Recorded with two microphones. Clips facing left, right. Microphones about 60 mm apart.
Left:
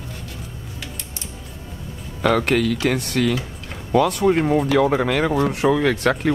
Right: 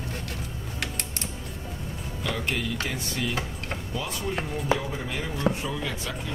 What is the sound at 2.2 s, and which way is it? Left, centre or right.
Speech, left.